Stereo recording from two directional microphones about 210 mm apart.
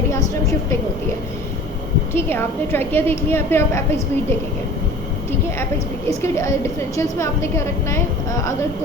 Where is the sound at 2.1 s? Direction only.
10° left (ahead or behind).